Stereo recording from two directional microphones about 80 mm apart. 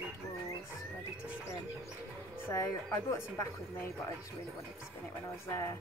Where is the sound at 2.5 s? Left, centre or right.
Left.